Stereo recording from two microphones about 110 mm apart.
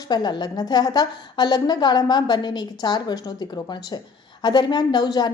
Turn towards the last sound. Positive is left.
turn(degrees=40)  # may be behind; listen again after turning